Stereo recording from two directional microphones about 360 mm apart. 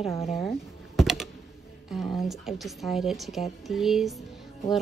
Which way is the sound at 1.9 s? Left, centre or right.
Centre.